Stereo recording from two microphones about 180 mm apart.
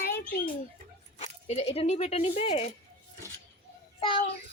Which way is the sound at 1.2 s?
35° left (ahead or behind).